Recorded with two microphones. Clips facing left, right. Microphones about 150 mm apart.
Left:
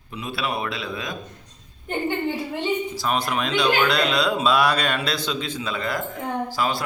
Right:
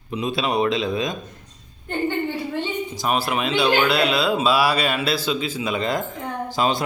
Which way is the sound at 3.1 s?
5° right (ahead or behind).